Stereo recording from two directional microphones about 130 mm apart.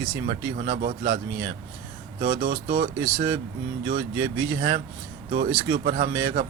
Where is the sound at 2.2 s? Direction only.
90° right.